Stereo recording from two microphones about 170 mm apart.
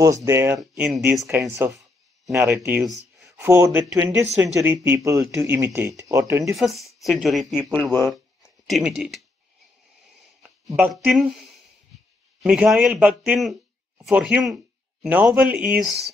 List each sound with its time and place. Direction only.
0.0 s speech: 20° right (ahead or behind); by 1.3 s centre (ahead or behind)
1.3 s speech: 15° right (ahead or behind)
6.4 s speech: centre (ahead or behind)
8.1 s a sound: centre (ahead or behind)
10.8 s speech: 5° right (ahead or behind)
15.0 s speech: 15° right (ahead or behind)